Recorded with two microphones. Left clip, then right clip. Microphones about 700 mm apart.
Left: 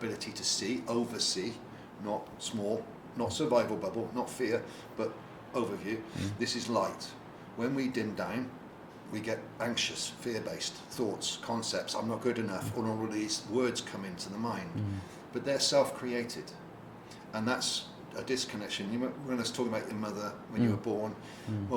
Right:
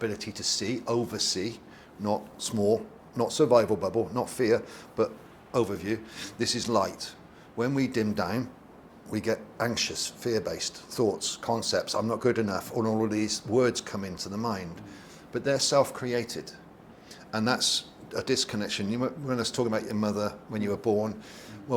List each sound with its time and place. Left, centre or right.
0.0 s speech: right
3.2 s speech: right
5.5 s a man's voice: right